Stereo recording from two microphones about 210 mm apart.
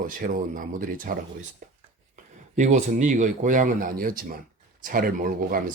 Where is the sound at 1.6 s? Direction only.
40° right (ahead or behind).